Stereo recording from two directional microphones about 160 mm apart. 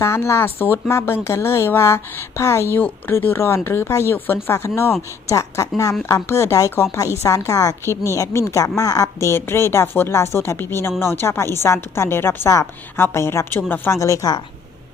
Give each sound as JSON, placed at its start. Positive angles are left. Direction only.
{"t": 0.0, "sound": "a woman's voice", "side_deg": 15}